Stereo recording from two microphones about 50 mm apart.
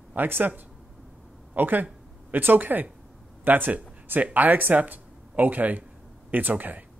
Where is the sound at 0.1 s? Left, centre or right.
Right.